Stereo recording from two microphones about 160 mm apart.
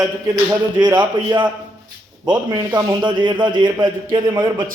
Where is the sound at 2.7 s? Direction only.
25° right (ahead or behind).